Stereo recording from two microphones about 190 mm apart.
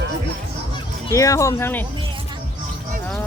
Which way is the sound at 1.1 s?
15° left (ahead or behind).